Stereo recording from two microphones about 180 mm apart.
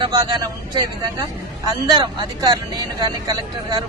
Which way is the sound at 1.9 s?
25° right (ahead or behind).